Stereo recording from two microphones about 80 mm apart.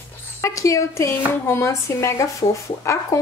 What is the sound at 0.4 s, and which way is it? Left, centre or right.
A woman's voice, left.